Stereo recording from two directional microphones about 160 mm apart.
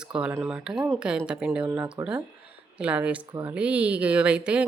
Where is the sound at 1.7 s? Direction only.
15° right (ahead or behind).